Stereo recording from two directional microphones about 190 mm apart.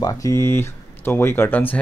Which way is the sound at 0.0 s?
15° left (ahead or behind).